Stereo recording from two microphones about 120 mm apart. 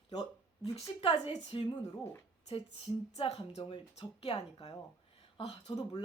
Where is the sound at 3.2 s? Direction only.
55° left (ahead or behind).